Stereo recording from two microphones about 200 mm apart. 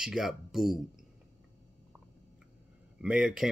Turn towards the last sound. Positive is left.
turn(degrees=-5)  # may be behind; listen again after turning